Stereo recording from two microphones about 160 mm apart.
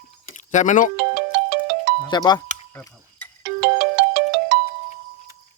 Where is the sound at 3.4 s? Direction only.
90° right.